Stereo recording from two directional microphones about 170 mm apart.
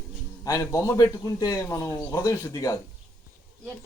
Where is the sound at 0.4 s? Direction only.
20° left (ahead or behind).